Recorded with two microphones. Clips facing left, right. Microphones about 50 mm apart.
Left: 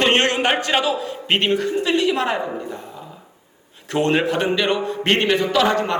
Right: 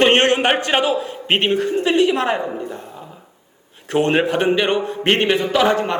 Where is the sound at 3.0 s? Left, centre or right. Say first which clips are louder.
Even; centre.